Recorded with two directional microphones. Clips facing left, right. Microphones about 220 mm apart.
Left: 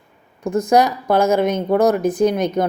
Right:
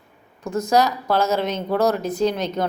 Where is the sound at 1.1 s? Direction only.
50° left (ahead or behind).